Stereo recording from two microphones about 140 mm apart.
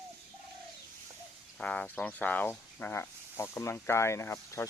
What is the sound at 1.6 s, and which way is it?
Speech, 5° left (ahead or behind).